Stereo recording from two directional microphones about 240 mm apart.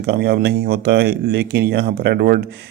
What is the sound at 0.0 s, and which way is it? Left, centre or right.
Speech, right.